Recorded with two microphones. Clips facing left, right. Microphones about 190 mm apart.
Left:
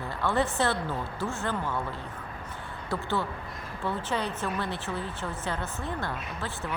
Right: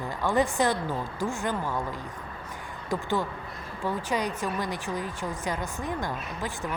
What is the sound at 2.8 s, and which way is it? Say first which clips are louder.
Speech: right 2 dB; 15° right (ahead or behind).